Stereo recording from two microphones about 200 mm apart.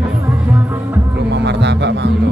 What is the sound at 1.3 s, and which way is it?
Music, 60° right (ahead or behind).